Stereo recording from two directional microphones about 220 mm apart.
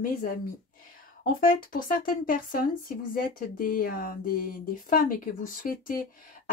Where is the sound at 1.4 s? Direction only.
40° left (ahead or behind).